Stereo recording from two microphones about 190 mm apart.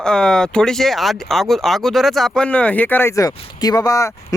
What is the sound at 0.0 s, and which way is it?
Speech, 5° left (ahead or behind).